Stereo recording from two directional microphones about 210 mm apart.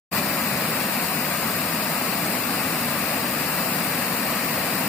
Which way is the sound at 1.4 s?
5° left (ahead or behind).